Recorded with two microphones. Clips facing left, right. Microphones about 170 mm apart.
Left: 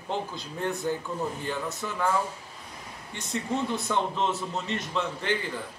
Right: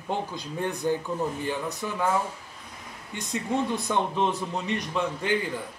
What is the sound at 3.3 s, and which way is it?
A man's voice, 15° right (ahead or behind).